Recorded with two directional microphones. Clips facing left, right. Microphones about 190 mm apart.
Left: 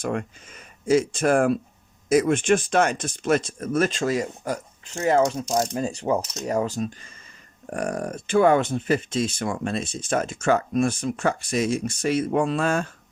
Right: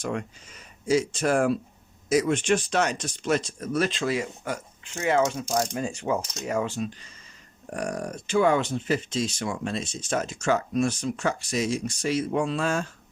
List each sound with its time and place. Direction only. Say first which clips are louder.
0.0 s speech: left 3 dB; 55° left (ahead or behind)
7.7 s speech: left 3 dB; 55° left (ahead or behind)